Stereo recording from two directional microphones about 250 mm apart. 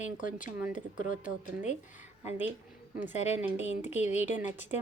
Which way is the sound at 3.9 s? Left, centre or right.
Left.